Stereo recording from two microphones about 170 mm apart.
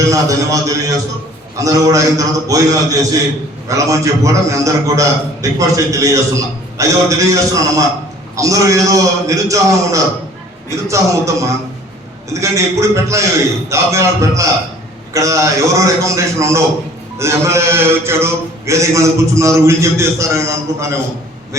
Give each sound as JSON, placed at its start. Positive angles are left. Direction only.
{"t": 0.1, "sound": "a man's voice", "side_deg": -20}
{"t": 10.8, "sound": "mantra", "side_deg": -20}
{"t": 15.1, "sound": "a man's voice", "side_deg": -20}
{"t": 17.2, "sound": "mantra", "side_deg": -15}
{"t": 21.5, "sound": "a sound", "side_deg": -20}